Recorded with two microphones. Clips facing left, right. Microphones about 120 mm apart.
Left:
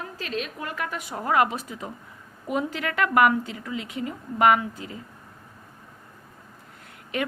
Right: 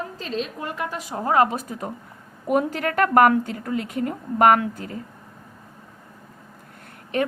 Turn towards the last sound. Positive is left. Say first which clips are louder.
# right 5 dB
turn(degrees=-40)  # may be behind; listen again after turning